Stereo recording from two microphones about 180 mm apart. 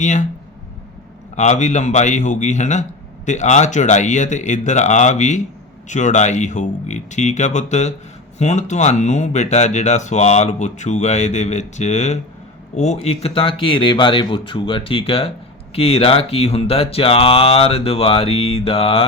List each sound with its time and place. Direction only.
0.0 s speech: 40° left (ahead or behind)
1.4 s speech: 40° left (ahead or behind)